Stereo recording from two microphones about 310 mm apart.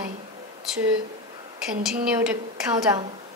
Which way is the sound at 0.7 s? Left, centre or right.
Centre.